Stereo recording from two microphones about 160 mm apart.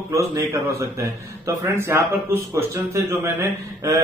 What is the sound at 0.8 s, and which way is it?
Mantra, 20° right (ahead or behind).